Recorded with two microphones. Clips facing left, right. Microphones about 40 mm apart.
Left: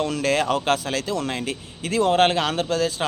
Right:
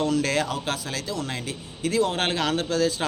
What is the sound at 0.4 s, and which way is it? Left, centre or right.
Speech, left.